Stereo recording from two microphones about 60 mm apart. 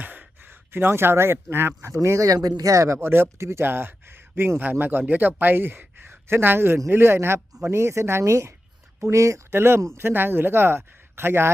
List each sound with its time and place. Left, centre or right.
0.0 s sigh: right
0.7 s speech: right
1.9 s speech: right
2.6 s speech: right
6.7 s speech: right
9.5 s speech: right